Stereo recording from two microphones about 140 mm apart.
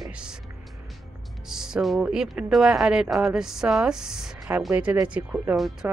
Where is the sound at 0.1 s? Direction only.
5° right (ahead or behind).